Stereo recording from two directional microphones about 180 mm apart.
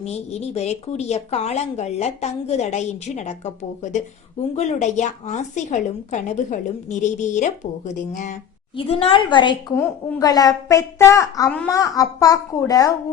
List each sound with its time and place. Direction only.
0.0 s speech: 35° left (ahead or behind)
8.7 s a child's voice: 35° left (ahead or behind)
9.7 s a woman's voice: 15° left (ahead or behind)